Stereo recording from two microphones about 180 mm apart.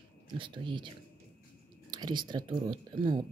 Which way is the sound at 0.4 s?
25° right (ahead or behind).